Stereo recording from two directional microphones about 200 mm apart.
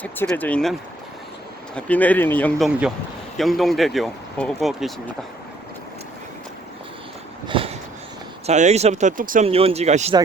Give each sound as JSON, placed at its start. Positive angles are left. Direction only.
{"t": 0.0, "sound": "speech", "side_deg": 10}
{"t": 7.4, "sound": "a sound", "side_deg": -25}
{"t": 8.4, "sound": "speech", "side_deg": -35}
{"t": 9.5, "sound": "speech", "side_deg": -30}